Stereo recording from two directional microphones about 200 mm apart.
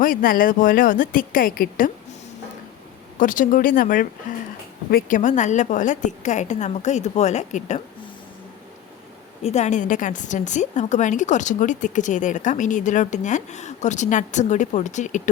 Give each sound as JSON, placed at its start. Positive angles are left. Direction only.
{"t": 0.0, "sound": "speech", "side_deg": 45}
{"t": 3.2, "sound": "a woman's voice", "side_deg": 40}
{"t": 9.4, "sound": "a woman's voice", "side_deg": 35}